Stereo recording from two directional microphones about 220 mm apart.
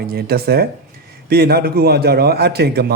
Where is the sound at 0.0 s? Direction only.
45° right (ahead or behind).